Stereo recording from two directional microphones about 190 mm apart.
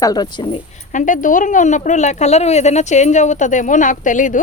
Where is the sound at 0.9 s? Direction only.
45° left (ahead or behind).